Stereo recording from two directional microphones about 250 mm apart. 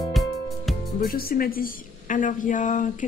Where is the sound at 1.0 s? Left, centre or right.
Left.